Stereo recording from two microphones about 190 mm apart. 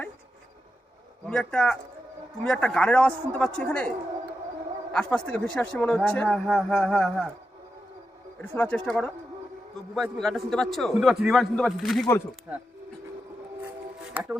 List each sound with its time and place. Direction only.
1.3 s speech: 5° left (ahead or behind)
8.4 s speech: 10° left (ahead or behind)
14.0 s music: 5° right (ahead or behind)